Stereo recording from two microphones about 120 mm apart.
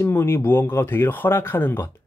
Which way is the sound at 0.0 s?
20° left (ahead or behind).